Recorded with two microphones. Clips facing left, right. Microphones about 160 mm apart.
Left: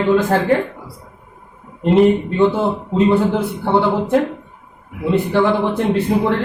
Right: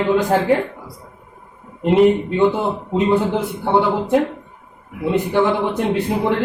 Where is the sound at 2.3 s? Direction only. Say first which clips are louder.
Left 1 dB; 15° right (ahead or behind).